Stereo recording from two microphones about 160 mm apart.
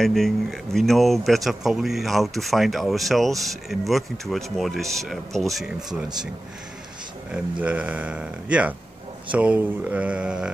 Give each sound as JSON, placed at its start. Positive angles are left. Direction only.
{"t": 0.0, "sound": "speech", "side_deg": 0}
{"t": 7.3, "sound": "speech", "side_deg": -5}